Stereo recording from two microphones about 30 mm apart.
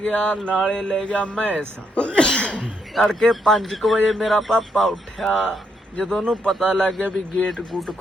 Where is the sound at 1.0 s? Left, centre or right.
Left.